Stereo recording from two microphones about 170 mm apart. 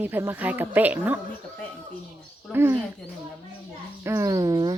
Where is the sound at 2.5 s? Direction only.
10° right (ahead or behind).